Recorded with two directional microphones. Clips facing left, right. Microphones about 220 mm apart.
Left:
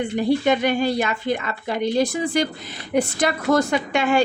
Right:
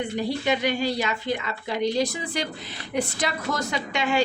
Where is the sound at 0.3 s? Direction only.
50° left (ahead or behind).